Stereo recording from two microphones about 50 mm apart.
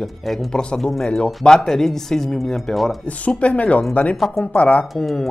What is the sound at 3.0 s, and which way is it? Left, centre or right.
Speech, left.